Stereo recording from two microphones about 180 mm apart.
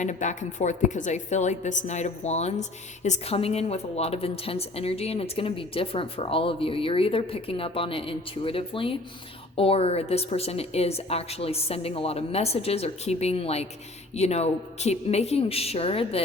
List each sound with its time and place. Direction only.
0.0 s a woman's voice: 40° left (ahead or behind)